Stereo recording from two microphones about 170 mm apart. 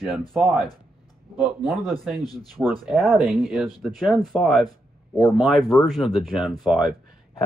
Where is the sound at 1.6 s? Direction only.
Centre (ahead or behind).